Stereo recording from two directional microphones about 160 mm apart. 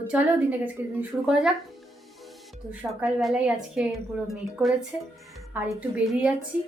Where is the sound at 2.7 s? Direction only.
10° right (ahead or behind).